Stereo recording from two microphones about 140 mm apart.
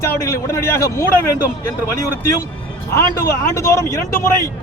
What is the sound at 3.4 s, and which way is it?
Speech, 20° left (ahead or behind).